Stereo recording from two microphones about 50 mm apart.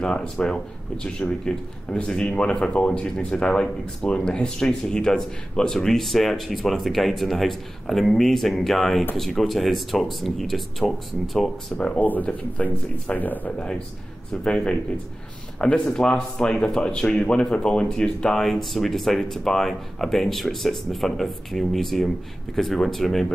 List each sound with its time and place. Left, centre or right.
0.0 s speech: centre
12.0 s speech: left
13.5 s speech: left
15.8 s speech: centre